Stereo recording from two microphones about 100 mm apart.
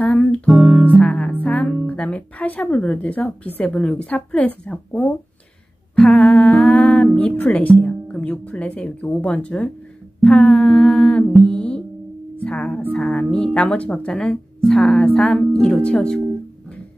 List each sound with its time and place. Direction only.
0.0 s music: 10° left (ahead or behind)
0.8 s music: 15° left (ahead or behind)
1.9 s speech: 15° left (ahead or behind)
5.9 s music: 15° left (ahead or behind)
7.2 s speech: 15° left (ahead or behind)